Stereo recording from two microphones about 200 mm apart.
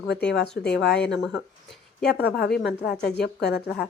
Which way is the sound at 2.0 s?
50° left (ahead or behind).